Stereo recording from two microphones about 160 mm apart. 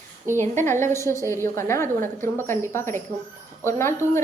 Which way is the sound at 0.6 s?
15° left (ahead or behind).